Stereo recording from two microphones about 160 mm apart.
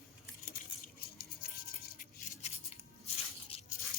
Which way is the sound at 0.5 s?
70° left (ahead or behind).